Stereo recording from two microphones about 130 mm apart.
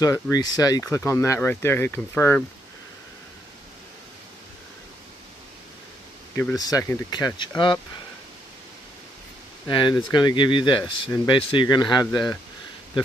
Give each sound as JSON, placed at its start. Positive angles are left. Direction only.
{"t": 0.0, "sound": "speech", "side_deg": 25}
{"t": 6.5, "sound": "speech", "side_deg": 30}
{"t": 9.7, "sound": "speech", "side_deg": 40}